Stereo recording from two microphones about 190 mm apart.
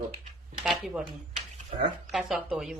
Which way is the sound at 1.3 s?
30° right (ahead or behind).